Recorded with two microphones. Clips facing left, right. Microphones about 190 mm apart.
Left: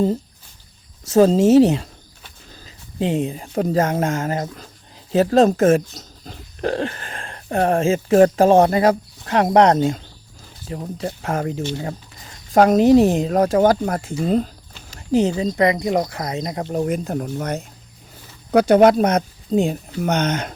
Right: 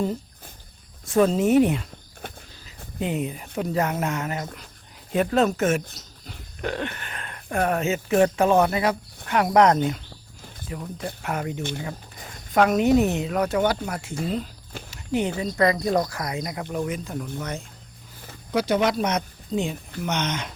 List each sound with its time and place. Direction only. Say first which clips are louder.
1.2 s speech: left 6 dB; 30° left (ahead or behind)
1.5 s speech: left 6 dB; 90° left
2.6 s a sound: left 6 dB; 30° left (ahead or behind)
3.5 s speech: left 6 dB; 40° left (ahead or behind)
12.5 s speech: left 6 dB; 30° left (ahead or behind)
15.3 s speech: left 4 dB; 25° left (ahead or behind)
16.7 s speech: left 7 dB; 50° left (ahead or behind)
18.8 s speech: left 9 dB; 50° left (ahead or behind)
19.5 s speech: left 8 dB; 35° left (ahead or behind)